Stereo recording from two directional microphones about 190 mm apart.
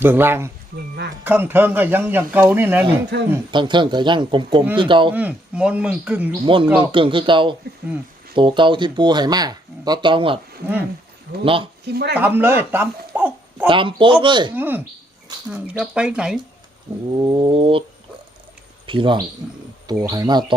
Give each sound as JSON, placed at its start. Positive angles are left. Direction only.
{"t": 0.0, "sound": "speech", "side_deg": -10}
{"t": 3.1, "sound": "speech", "side_deg": -60}
{"t": 3.5, "sound": "speech", "side_deg": -25}
{"t": 5.1, "sound": "speech", "side_deg": -5}
{"t": 6.4, "sound": "speech", "side_deg": -25}
{"t": 11.4, "sound": "speech", "side_deg": -30}
{"t": 11.9, "sound": "speech", "side_deg": -55}
{"t": 12.1, "sound": "speech", "side_deg": -10}
{"t": 13.7, "sound": "speech", "side_deg": -25}
{"t": 14.5, "sound": "speech", "side_deg": -10}
{"t": 17.2, "sound": "speech", "side_deg": -25}
{"t": 18.9, "sound": "speech", "side_deg": -25}